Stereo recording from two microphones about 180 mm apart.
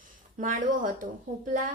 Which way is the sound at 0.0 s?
45° right (ahead or behind).